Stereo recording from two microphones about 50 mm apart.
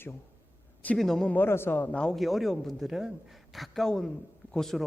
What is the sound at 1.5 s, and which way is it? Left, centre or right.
Speech, left.